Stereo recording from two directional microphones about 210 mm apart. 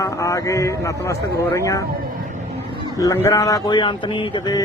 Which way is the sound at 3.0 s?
15° left (ahead or behind).